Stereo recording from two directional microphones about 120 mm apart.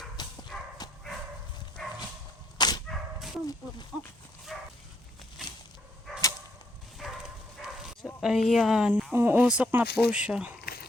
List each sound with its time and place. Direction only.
0.2 s clip-clop: 35° left (ahead or behind)
0.8 s dog: 35° left (ahead or behind)
1.8 s bow-wow: centre (ahead or behind)
2.6 s dog: 35° left (ahead or behind)
2.8 s dog: centre (ahead or behind)
4.5 s dog: centre (ahead or behind)
7.0 s bow-wow: 5° right (ahead or behind)
8.2 s a woman's voice: centre (ahead or behind)
9.1 s speech: 20° right (ahead or behind)